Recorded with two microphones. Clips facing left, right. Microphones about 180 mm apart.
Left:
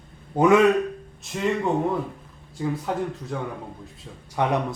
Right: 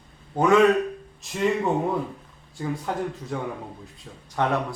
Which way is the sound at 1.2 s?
Centre (ahead or behind).